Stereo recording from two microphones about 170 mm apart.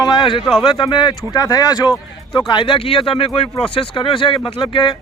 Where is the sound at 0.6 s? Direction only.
25° left (ahead or behind).